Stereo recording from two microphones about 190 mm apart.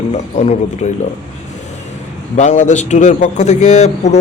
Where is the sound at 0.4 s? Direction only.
35° left (ahead or behind).